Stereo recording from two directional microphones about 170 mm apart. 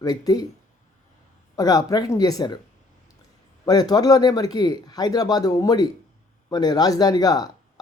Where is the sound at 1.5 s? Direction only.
20° left (ahead or behind).